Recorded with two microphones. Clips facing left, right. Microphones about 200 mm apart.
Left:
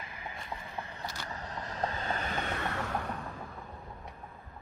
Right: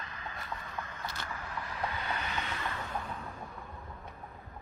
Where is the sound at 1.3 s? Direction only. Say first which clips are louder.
Left 1 dB; 40° left (ahead or behind).